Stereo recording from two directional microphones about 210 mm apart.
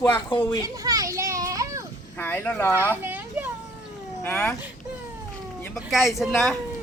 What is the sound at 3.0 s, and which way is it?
Children playing, 10° right (ahead or behind).